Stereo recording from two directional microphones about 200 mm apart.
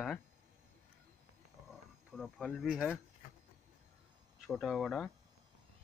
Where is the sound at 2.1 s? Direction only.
Centre (ahead or behind).